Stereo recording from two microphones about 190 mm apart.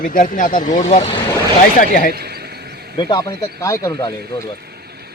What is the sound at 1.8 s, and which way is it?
Speech, 45° left (ahead or behind).